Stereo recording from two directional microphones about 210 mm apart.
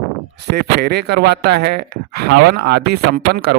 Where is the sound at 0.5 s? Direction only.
50° right (ahead or behind).